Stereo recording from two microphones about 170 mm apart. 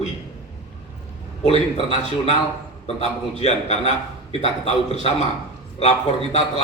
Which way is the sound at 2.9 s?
40° left (ahead or behind).